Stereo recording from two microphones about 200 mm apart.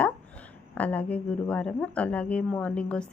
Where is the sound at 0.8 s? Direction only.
5° left (ahead or behind).